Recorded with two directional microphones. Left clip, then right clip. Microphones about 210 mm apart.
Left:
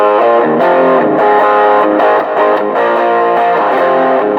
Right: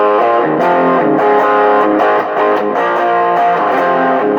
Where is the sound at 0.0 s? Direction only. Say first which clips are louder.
Left 2 dB; 45° left (ahead or behind).